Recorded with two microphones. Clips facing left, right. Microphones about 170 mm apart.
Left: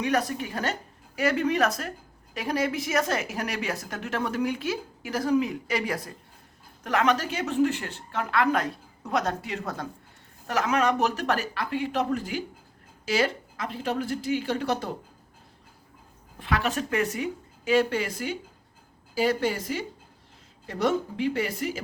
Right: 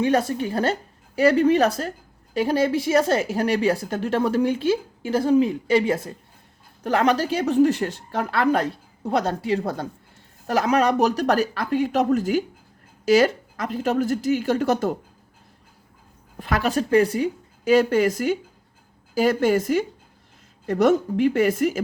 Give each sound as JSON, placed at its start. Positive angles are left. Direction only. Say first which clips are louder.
{"t": 0.0, "sound": "a woman's voice", "louder": "right 6 dB", "side_deg": -30}
{"t": 16.4, "sound": "speech", "louder": "right 5 dB", "side_deg": -40}